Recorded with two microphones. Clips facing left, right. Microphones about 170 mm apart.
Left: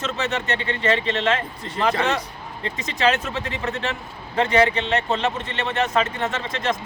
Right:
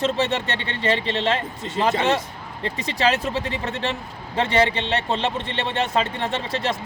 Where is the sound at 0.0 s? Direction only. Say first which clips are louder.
Right 4 dB; 30° right (ahead or behind).